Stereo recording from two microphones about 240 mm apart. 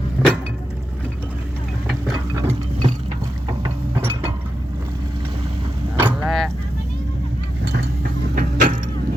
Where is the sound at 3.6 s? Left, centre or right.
Right.